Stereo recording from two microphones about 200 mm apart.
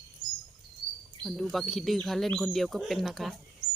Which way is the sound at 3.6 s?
20° right (ahead or behind).